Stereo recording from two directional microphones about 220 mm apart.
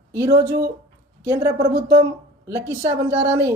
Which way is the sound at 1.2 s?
10° right (ahead or behind).